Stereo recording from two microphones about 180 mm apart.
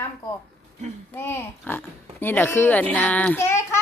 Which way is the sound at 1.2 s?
15° left (ahead or behind).